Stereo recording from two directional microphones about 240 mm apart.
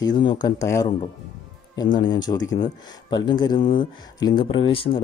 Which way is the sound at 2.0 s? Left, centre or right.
Centre.